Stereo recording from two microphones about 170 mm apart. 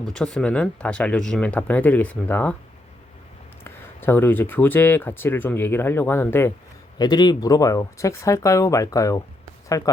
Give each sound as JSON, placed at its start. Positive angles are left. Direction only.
{"t": 0.1, "sound": "speech", "side_deg": 5}
{"t": 3.6, "sound": "speech", "side_deg": 10}
{"t": 7.0, "sound": "speech", "side_deg": 25}